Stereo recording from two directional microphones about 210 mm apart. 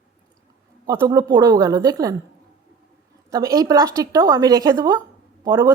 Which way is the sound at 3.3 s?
15° right (ahead or behind).